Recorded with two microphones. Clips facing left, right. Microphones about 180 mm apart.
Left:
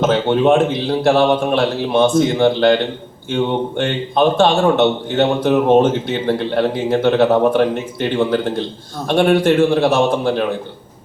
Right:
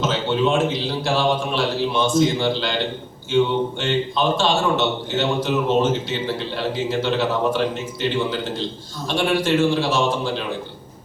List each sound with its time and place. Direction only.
0.0 s a man's voice: 55° left (ahead or behind)